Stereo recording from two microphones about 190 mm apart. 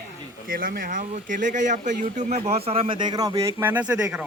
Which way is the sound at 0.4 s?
50° right (ahead or behind).